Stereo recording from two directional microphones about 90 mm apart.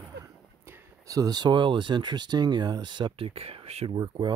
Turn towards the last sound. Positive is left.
turn(degrees=-55)  # may be behind; listen again after turning